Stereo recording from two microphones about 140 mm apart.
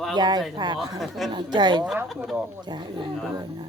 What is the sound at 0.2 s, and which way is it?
Speech, 30° right (ahead or behind).